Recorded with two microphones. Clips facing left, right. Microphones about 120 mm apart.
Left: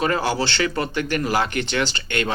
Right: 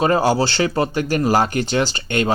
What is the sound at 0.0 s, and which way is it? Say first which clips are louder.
Speech: right 5 dB; 35° right (ahead or behind).